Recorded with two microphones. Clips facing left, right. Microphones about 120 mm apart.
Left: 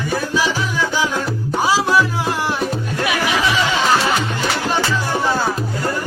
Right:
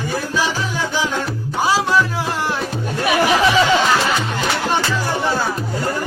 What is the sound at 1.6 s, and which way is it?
Music, 10° left (ahead or behind).